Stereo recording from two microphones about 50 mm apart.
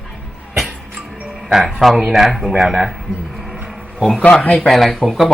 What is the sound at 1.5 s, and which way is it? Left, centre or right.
Speech, centre.